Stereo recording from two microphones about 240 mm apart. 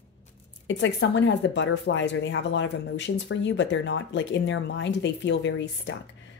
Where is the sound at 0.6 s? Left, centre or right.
Left.